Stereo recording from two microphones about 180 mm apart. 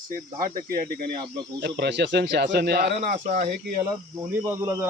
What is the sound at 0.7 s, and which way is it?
Speech, 55° right (ahead or behind).